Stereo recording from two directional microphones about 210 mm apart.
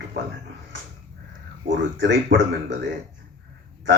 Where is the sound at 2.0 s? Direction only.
55° right (ahead or behind).